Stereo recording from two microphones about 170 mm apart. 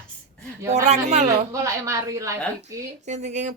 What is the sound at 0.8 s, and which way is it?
Speech, 40° right (ahead or behind).